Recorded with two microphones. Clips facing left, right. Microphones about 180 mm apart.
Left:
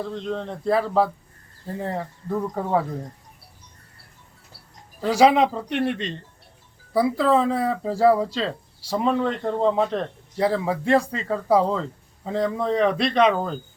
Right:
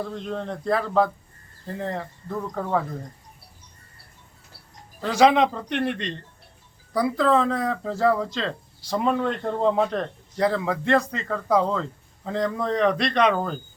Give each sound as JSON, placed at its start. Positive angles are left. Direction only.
{"t": 0.0, "sound": "speech", "side_deg": -5}
{"t": 4.9, "sound": "speech", "side_deg": 10}